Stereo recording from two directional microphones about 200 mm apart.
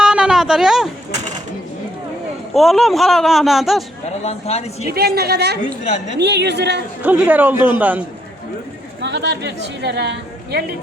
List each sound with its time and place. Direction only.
0.0 s a sound: 5° right (ahead or behind)
2.5 s speech: centre (ahead or behind)
4.2 s speech: 30° left (ahead or behind)
4.9 s a woman's voice: 50° right (ahead or behind)
7.0 s speech: 10° right (ahead or behind)
9.0 s a woman's voice: 60° right (ahead or behind)